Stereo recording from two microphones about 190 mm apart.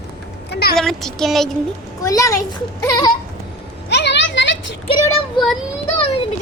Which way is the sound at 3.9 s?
65° left (ahead or behind).